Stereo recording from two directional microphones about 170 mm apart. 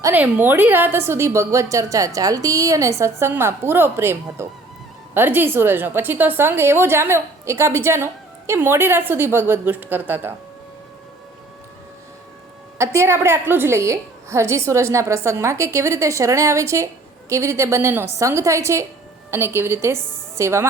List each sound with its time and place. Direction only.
0.0 s a woman's voice: 10° right (ahead or behind)
12.8 s a woman's voice: 15° right (ahead or behind)